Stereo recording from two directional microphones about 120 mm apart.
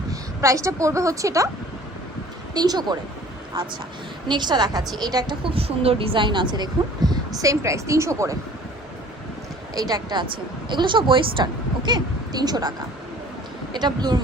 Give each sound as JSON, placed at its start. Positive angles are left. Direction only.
{"t": 0.1, "sound": "a woman's voice", "side_deg": -25}
{"t": 2.6, "sound": "a woman's voice", "side_deg": -35}
{"t": 4.3, "sound": "a woman's voice", "side_deg": -40}
{"t": 7.4, "sound": "speech", "side_deg": -25}
{"t": 9.7, "sound": "a woman's voice", "side_deg": -30}
{"t": 13.7, "sound": "a woman's voice", "side_deg": -35}